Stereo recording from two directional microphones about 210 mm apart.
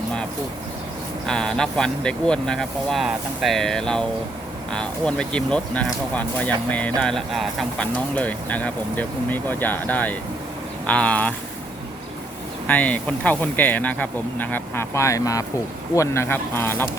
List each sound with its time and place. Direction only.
1.3 s speech: 5° left (ahead or behind)
12.6 s speech: 5° left (ahead or behind)